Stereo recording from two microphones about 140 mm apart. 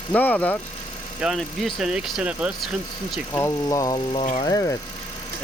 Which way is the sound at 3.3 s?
20° left (ahead or behind).